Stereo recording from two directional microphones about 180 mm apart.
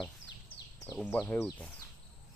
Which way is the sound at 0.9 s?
10° left (ahead or behind).